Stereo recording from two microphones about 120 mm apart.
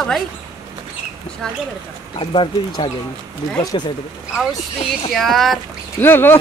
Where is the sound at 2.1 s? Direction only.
45° left (ahead or behind).